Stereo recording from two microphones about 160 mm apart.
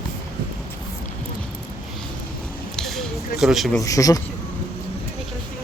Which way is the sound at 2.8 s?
Centre (ahead or behind).